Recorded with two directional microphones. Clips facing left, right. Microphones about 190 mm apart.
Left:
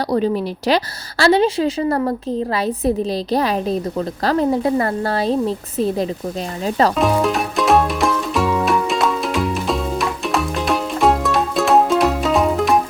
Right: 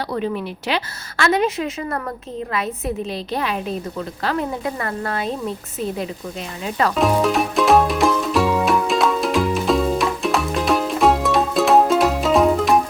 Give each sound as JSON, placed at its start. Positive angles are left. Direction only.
{"t": 0.1, "sound": "a woman's voice", "side_deg": 35}
{"t": 7.0, "sound": "music", "side_deg": 0}